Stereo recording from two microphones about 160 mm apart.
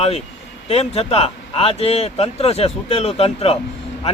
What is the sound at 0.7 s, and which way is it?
Speech, 40° left (ahead or behind).